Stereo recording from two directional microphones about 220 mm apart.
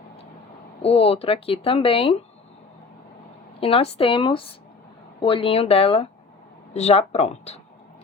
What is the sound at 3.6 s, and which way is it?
Speech, 25° left (ahead or behind).